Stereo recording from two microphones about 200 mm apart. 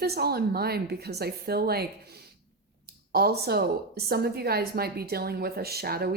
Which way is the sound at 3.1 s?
50° right (ahead or behind).